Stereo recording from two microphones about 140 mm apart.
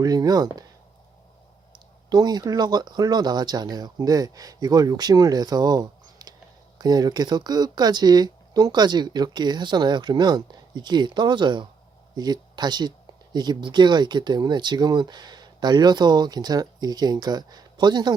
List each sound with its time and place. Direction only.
0.0 s speech: 30° right (ahead or behind)
2.0 s speech: 30° right (ahead or behind)